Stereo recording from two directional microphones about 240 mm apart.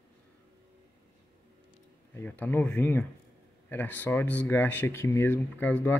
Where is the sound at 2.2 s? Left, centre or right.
Centre.